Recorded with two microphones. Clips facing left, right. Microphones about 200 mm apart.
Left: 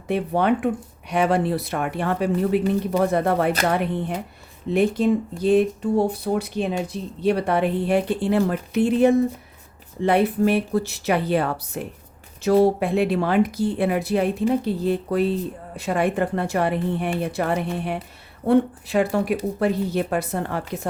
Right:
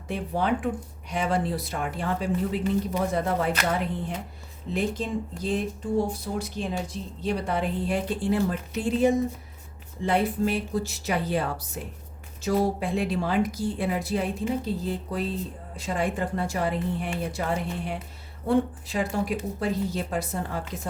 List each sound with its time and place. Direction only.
0.1 s speech: 65° left (ahead or behind)